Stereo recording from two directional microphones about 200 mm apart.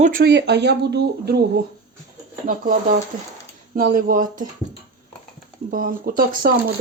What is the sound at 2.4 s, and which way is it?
Speech, 45° right (ahead or behind).